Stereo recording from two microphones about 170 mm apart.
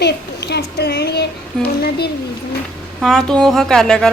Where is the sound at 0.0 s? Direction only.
80° left.